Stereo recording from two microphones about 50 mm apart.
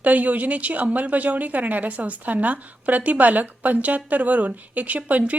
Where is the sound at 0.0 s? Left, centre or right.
Right.